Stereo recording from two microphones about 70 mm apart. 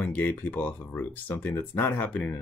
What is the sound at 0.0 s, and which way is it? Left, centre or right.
Speech, left.